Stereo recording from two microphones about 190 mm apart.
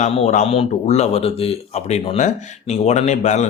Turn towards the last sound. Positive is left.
turn(degrees=40)  # may be behind; listen again after turning